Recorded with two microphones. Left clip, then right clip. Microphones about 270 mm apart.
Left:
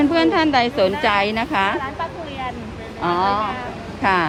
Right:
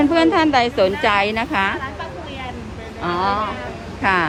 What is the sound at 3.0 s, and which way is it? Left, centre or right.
A woman's voice, centre.